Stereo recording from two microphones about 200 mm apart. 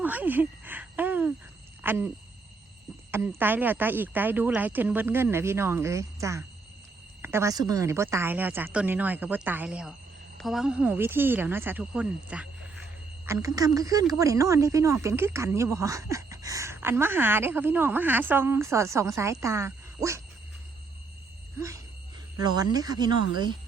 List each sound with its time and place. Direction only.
0.0 s a sound: 10° right (ahead or behind)
1.8 s speech: 10° right (ahead or behind)
3.1 s speech: 10° right (ahead or behind)
22.4 s speech: 20° right (ahead or behind)